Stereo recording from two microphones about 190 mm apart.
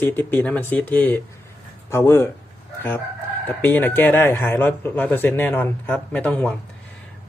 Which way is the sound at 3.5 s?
10° left (ahead or behind).